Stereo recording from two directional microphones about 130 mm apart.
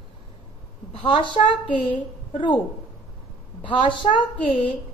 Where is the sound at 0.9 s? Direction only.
40° left (ahead or behind).